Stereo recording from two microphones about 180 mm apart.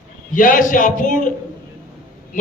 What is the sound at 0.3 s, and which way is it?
Speech, 50° left (ahead or behind).